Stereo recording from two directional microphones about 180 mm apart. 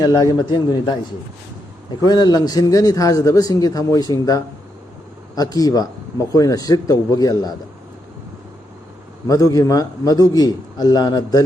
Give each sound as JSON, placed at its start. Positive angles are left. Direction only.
{"t": 0.0, "sound": "a man's voice", "side_deg": 20}
{"t": 2.0, "sound": "a man's voice", "side_deg": 25}
{"t": 9.2, "sound": "a man's voice", "side_deg": 20}